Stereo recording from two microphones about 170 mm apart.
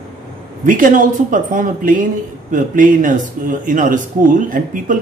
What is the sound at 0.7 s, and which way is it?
A man's voice, 50° right (ahead or behind).